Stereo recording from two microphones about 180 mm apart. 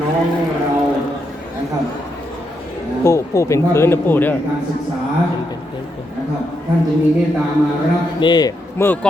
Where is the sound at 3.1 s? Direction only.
15° left (ahead or behind).